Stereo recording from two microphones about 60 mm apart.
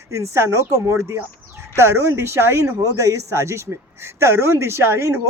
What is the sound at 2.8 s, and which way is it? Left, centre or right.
Speech, right.